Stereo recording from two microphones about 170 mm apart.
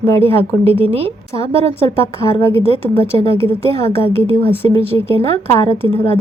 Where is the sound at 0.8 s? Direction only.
35° right (ahead or behind).